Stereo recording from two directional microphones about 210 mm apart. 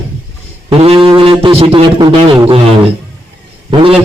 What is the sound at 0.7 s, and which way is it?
A man's voice, 25° right (ahead or behind).